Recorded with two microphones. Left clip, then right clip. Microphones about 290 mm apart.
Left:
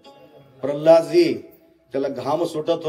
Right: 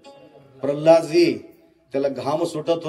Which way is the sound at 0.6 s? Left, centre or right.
Right.